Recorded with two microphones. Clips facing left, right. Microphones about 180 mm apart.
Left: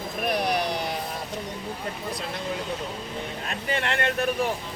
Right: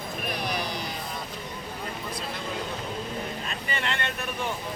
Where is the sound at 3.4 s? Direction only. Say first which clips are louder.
Left 4 dB; 60° left (ahead or behind).